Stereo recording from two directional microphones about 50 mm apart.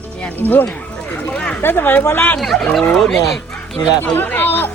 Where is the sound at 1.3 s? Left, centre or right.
Left.